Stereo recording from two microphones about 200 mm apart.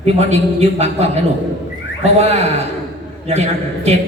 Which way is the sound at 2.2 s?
30° right (ahead or behind).